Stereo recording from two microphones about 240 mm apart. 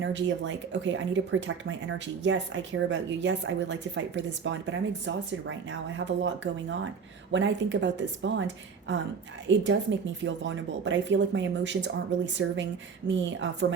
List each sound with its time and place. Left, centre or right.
0.0 s speech: right
9.5 s speech: right